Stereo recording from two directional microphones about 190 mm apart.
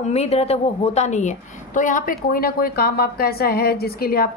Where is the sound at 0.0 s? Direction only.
35° left (ahead or behind).